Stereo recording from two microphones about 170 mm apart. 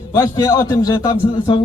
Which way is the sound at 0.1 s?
20° left (ahead or behind).